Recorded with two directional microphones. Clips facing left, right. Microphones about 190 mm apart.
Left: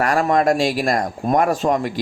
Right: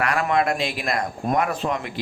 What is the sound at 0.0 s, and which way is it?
A man's voice, 40° left (ahead or behind).